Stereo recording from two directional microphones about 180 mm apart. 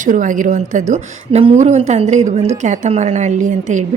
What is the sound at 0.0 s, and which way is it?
A woman's voice, 45° right (ahead or behind).